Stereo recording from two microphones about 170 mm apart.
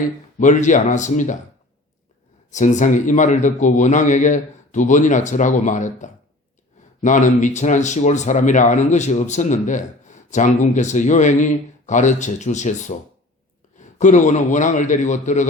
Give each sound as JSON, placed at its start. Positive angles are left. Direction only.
{"t": 0.0, "sound": "speech", "side_deg": 50}
{"t": 2.5, "sound": "speech", "side_deg": 45}